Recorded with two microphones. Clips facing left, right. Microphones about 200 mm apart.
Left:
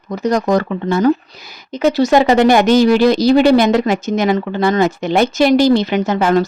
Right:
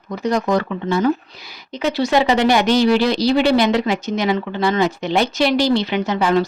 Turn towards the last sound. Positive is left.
turn(degrees=45)  # may be behind; listen again after turning